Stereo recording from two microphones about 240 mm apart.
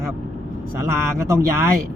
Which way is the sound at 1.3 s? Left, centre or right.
Centre.